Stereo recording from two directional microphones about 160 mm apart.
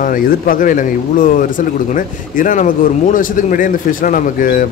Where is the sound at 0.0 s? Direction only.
60° left (ahead or behind).